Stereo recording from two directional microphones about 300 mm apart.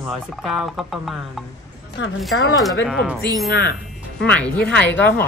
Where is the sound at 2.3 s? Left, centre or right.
Left.